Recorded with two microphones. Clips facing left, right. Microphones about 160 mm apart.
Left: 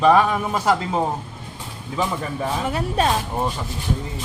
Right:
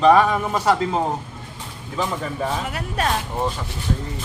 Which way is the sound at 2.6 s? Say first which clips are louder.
Left 4 dB; 30° left (ahead or behind).